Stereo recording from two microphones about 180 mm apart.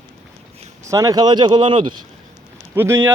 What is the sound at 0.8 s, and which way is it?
Speech, 20° right (ahead or behind).